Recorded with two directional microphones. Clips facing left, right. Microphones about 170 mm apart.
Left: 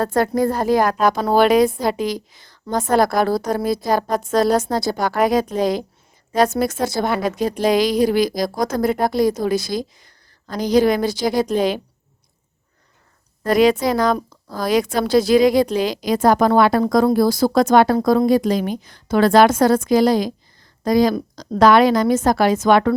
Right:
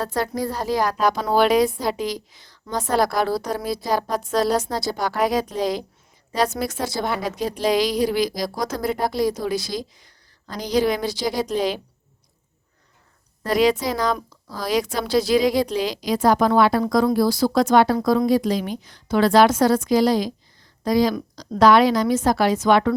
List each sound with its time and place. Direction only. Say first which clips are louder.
0.0 s a woman's voice: left 7 dB; 50° left (ahead or behind)
13.4 s a woman's voice: left 4 dB; 50° left (ahead or behind)